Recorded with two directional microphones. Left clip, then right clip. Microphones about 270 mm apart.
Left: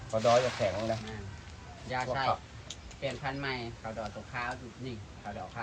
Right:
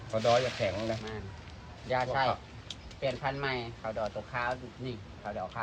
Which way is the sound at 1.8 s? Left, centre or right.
Centre.